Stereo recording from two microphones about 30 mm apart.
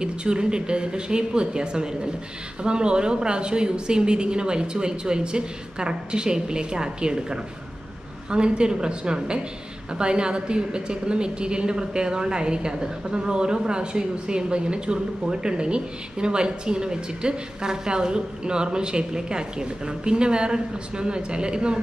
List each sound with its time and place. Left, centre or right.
0.0 s a woman's voice: right